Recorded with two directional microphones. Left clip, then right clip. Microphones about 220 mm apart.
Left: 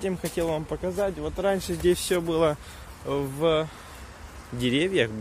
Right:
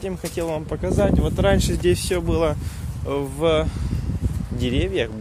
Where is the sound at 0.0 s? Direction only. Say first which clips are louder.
Right 1 dB; 5° right (ahead or behind).